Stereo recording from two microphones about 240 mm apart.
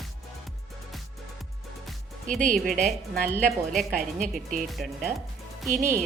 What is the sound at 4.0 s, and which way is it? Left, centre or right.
Speech, right.